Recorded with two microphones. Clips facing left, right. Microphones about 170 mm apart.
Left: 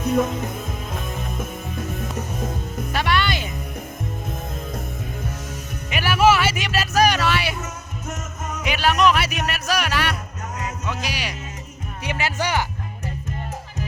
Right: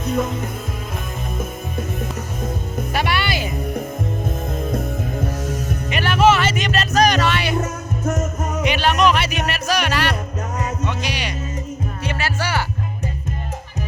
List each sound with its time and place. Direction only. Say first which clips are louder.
2.9 s music: even; 10° right (ahead or behind)
5.9 s vehicle: right 1 dB; 5° left (ahead or behind)
8.6 s music: right 1 dB; 5° left (ahead or behind)
12.0 s music: left 1 dB; 15° left (ahead or behind)